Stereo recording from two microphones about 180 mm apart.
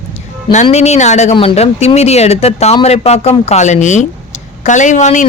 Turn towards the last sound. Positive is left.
turn(degrees=40)  # may be behind; listen again after turning